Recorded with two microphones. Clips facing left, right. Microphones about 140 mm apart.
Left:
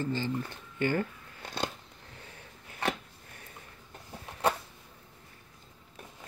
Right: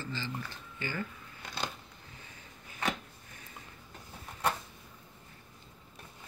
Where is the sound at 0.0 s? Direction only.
50° left (ahead or behind).